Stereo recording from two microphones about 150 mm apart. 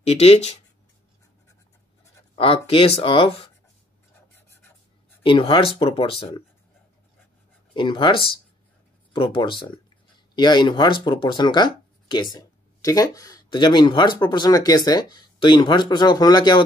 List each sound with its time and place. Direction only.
0.0 s speech: 45° left (ahead or behind)
2.3 s speech: 40° left (ahead or behind)
5.2 s speech: 35° left (ahead or behind)
7.7 s speech: 35° left (ahead or behind)